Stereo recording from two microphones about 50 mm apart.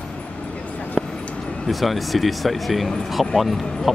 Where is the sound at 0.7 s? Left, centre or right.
Left.